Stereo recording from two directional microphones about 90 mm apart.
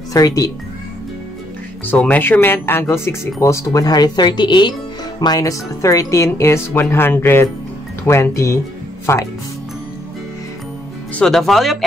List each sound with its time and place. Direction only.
0.1 s speech: 40° left (ahead or behind)
1.9 s speech: 20° left (ahead or behind); by 4.7 s 60° left (ahead or behind)
5.2 s speech: 45° left (ahead or behind)
11.1 s speech: 5° left (ahead or behind)